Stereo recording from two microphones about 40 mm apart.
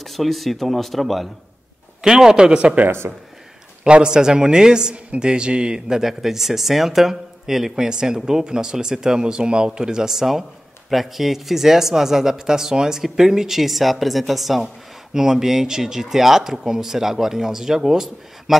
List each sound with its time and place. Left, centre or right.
0.0 s speech: centre
2.0 s a man's voice: centre
3.8 s a man's voice: right
5.9 s speech: centre
7.7 s speech: centre
15.1 s speech: centre